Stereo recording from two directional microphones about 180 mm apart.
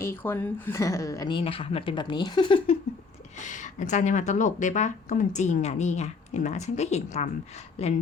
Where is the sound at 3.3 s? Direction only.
45° left (ahead or behind).